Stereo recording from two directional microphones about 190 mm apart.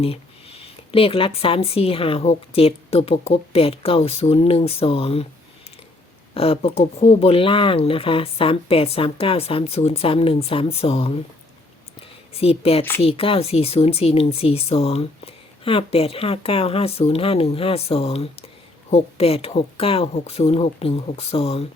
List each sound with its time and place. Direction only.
0.0 s speech: 30° left (ahead or behind)
6.3 s speech: 30° left (ahead or behind)
12.3 s speech: 30° left (ahead or behind)